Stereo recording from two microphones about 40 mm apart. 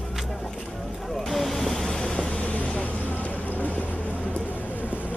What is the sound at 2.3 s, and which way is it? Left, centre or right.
Vehicle, left.